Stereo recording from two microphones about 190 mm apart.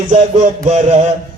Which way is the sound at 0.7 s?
35° right (ahead or behind).